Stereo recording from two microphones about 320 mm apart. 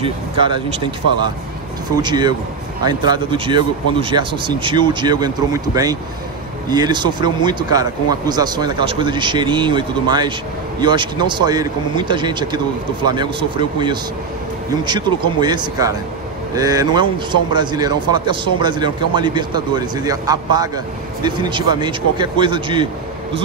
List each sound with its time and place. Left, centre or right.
0.0 s a man's voice: centre
2.0 s a man's voice: centre